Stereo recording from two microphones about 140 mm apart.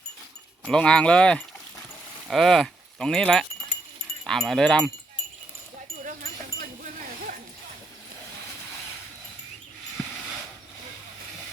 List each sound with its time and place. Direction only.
0.6 s speech: 5° left (ahead or behind)
6.1 s wind chime: 80° right